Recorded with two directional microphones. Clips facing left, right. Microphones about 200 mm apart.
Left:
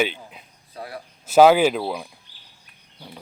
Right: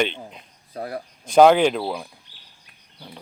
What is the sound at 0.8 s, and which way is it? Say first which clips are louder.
Speech: right 5 dB; 50° right (ahead or behind).